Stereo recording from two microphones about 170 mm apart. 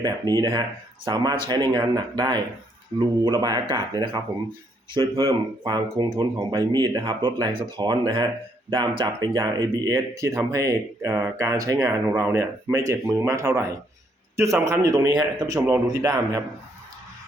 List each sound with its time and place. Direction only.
0.0 s speech: 25° right (ahead or behind)